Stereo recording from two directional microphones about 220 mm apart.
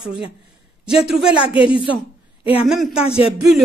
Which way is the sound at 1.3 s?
25° left (ahead or behind).